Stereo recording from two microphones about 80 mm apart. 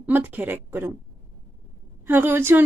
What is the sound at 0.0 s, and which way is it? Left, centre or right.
Speech, right.